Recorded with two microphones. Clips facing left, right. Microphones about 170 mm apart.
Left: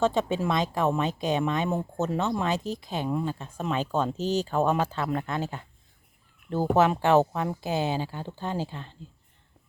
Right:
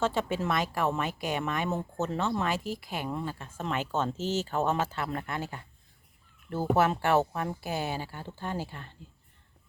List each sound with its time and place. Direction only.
0.0 s speech: 20° left (ahead or behind)